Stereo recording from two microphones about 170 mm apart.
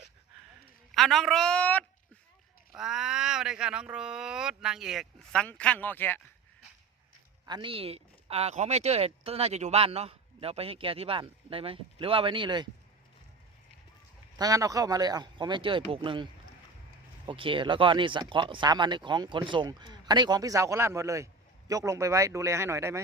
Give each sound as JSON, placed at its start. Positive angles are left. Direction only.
{"t": 0.9, "sound": "speech", "side_deg": 0}
{"t": 2.7, "sound": "speech", "side_deg": -5}
{"t": 7.4, "sound": "speech", "side_deg": -25}
{"t": 14.3, "sound": "speech", "side_deg": -20}